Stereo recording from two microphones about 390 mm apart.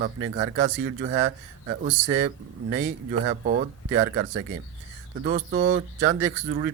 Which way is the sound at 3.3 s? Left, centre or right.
Right.